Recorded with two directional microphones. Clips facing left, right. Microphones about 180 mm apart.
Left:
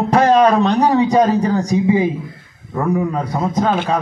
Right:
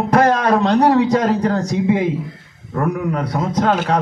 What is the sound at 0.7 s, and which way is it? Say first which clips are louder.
A man's voice: right 1 dB; 75° right (ahead or behind).